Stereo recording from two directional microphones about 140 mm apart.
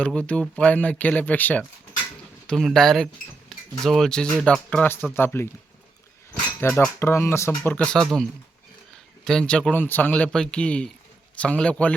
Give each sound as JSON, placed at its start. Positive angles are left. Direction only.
{"t": 0.0, "sound": "speech", "side_deg": 10}
{"t": 3.5, "sound": "a sound", "side_deg": 5}
{"t": 3.8, "sound": "speech", "side_deg": 0}
{"t": 6.6, "sound": "speech", "side_deg": 15}